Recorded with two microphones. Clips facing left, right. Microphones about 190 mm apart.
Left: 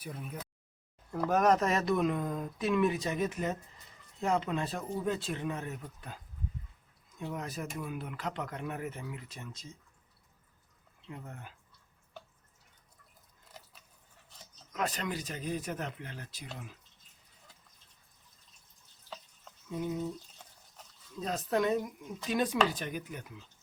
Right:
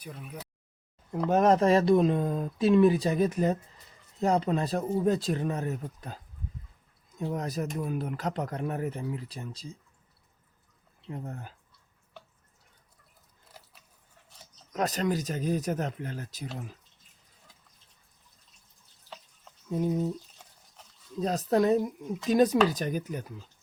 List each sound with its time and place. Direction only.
0.0 s a sound: centre (ahead or behind)
1.3 s speech: 25° right (ahead or behind)
7.2 s speech: 40° right (ahead or behind)
11.1 s speech: 35° right (ahead or behind)
14.7 s speech: 40° right (ahead or behind)
19.7 s speech: 40° right (ahead or behind)
21.2 s speech: 40° right (ahead or behind)